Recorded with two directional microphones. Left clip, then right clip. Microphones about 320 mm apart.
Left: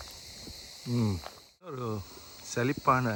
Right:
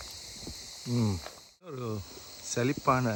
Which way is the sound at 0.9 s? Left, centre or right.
Centre.